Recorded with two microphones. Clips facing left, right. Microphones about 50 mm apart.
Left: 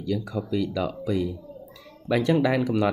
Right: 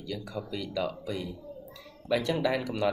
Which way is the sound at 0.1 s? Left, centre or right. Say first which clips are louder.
Left 9 dB; left.